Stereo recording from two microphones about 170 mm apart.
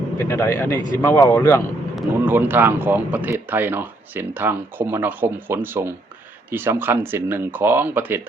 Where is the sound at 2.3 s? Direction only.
10° right (ahead or behind).